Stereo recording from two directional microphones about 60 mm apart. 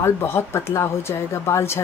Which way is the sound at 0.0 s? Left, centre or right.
Left.